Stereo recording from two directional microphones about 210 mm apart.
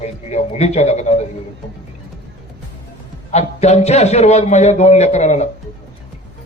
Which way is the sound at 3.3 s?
30° left (ahead or behind).